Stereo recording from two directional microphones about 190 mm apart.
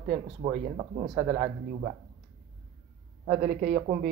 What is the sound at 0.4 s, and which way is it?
Speech, 35° right (ahead or behind).